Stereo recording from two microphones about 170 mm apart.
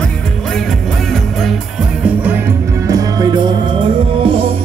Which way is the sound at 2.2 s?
10° right (ahead or behind).